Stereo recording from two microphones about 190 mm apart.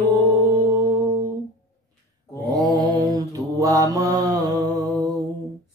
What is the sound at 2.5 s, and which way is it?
Mantra, 20° right (ahead or behind).